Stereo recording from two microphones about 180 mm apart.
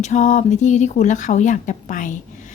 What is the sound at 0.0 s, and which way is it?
A woman's voice, 40° left (ahead or behind).